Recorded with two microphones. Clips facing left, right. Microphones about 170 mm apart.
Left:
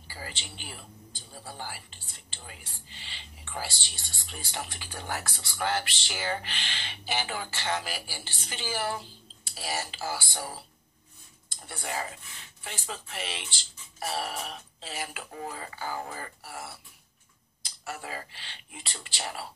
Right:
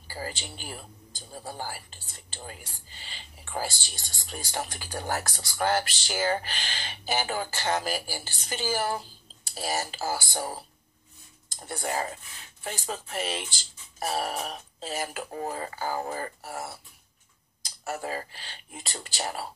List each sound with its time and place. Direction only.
0.1 s speech: 40° right (ahead or behind)